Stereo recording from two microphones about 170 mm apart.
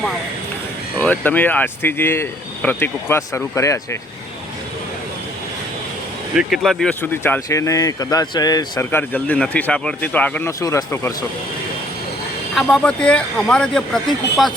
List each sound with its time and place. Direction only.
0.9 s speech: 10° left (ahead or behind)
6.3 s speech: centre (ahead or behind)
10.6 s speech: 20° left (ahead or behind)
12.5 s speech: 5° left (ahead or behind)